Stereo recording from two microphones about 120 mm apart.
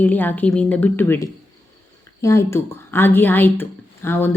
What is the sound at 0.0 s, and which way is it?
A woman's voice, 15° left (ahead or behind).